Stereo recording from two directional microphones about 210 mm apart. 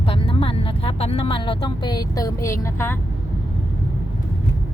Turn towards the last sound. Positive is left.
turn(degrees=10)  # may be behind; listen again after turning